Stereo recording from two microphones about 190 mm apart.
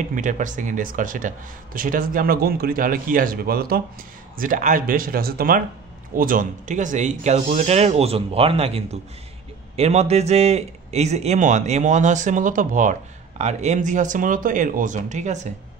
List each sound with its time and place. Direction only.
0.1 s a man's voice: 40° right (ahead or behind)